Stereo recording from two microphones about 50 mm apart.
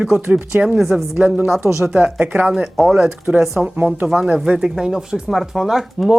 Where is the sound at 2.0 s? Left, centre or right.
Right.